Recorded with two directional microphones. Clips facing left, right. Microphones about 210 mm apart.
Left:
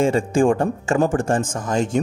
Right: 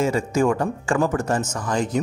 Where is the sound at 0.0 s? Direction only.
30° left (ahead or behind).